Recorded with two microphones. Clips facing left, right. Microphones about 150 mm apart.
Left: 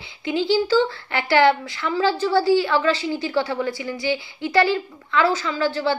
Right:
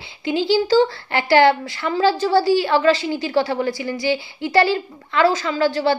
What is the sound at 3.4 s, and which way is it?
Speech, 40° right (ahead or behind).